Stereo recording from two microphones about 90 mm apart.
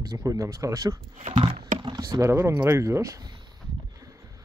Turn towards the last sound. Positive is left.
turn(degrees=-35)  # may be behind; listen again after turning